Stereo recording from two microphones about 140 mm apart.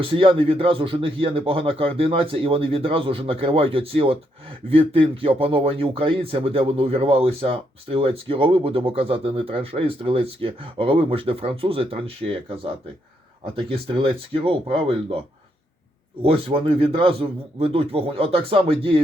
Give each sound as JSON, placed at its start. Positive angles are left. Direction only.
{"t": 0.0, "sound": "a man's voice", "side_deg": -40}
{"t": 16.2, "sound": "a man's voice", "side_deg": -40}